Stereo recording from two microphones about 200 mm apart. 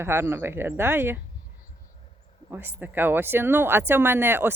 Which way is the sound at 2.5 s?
10° right (ahead or behind).